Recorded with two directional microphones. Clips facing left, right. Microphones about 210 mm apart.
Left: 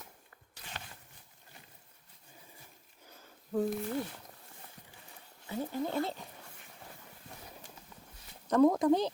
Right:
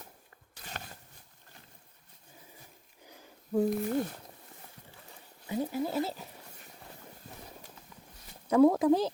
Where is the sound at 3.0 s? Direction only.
15° right (ahead or behind).